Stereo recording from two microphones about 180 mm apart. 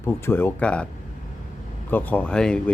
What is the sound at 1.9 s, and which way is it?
Speech, 10° left (ahead or behind).